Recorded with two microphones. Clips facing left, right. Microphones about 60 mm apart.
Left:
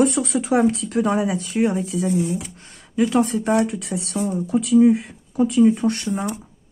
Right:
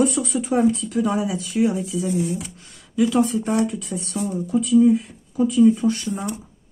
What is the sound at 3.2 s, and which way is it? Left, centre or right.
Speech, left.